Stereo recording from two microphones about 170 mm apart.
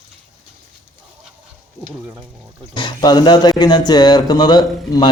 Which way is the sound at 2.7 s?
25° left (ahead or behind).